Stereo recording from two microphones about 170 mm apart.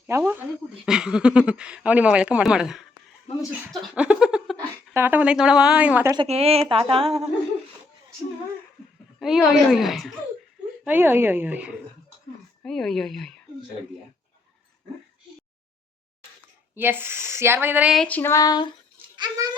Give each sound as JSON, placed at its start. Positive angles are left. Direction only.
{"t": 0.1, "sound": "speech", "side_deg": -15}
{"t": 0.9, "sound": "speech", "side_deg": -5}
{"t": 3.7, "sound": "a sound", "side_deg": -5}
{"t": 4.9, "sound": "speech", "side_deg": -10}
{"t": 6.1, "sound": "a woman's voice", "side_deg": -35}
{"t": 9.1, "sound": "speech", "side_deg": 0}
{"t": 10.8, "sound": "speech", "side_deg": -10}
{"t": 16.7, "sound": "speech", "side_deg": -10}
{"t": 17.9, "sound": "a sound", "side_deg": 5}
{"t": 19.1, "sound": "a child's voice", "side_deg": -25}